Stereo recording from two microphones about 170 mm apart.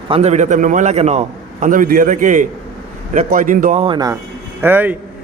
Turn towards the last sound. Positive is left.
turn(degrees=-10)  # may be behind; listen again after turning